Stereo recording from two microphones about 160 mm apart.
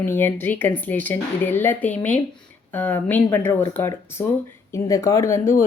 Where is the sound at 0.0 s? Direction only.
15° left (ahead or behind).